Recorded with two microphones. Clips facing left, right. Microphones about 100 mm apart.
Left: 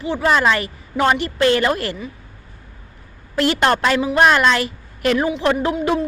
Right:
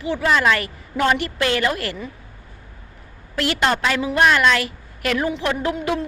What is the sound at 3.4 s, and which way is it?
A woman's voice, 35° left (ahead or behind).